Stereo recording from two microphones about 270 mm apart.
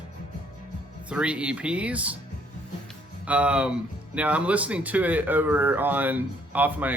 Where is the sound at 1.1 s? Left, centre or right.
Centre.